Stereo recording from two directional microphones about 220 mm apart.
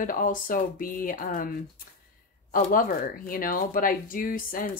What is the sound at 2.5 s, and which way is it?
Speech, 40° left (ahead or behind).